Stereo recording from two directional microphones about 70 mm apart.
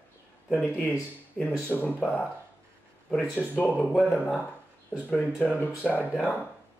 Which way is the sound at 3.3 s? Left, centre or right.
Left.